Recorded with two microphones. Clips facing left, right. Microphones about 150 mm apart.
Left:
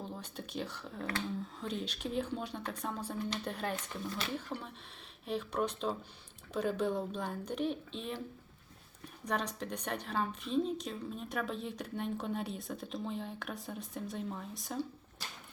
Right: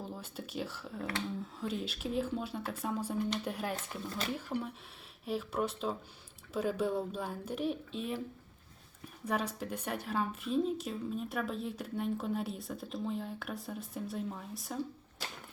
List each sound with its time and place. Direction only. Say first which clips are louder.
0.0 s a woman's voice: right 1 dB; 5° right (ahead or behind)
9.2 s a woman's voice: right 1 dB; 5° right (ahead or behind)